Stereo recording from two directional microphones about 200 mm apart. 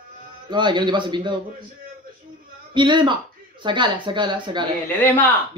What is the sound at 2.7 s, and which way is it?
Speech, 25° right (ahead or behind).